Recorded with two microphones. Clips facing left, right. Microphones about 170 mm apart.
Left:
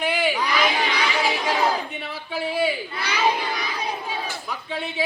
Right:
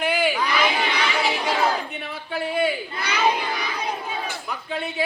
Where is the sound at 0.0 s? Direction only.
Centre (ahead or behind).